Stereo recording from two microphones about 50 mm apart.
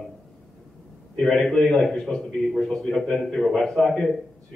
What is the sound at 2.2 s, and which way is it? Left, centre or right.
Mantra, centre.